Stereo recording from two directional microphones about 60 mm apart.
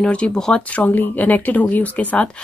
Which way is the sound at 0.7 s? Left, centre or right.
Left.